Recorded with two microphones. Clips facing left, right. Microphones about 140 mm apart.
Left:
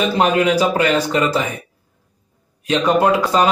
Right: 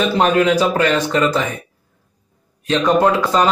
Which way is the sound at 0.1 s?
10° left (ahead or behind).